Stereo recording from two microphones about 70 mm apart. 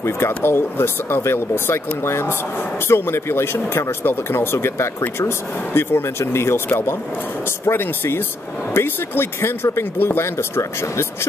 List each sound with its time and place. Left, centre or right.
0.0 s speech: left